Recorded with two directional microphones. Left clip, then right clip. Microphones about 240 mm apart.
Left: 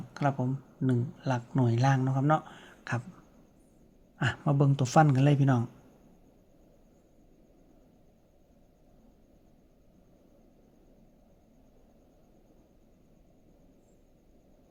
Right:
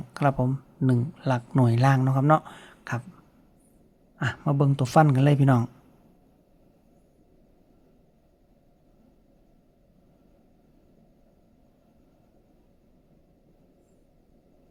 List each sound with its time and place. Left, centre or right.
0.1 s speech: right
4.2 s speech: centre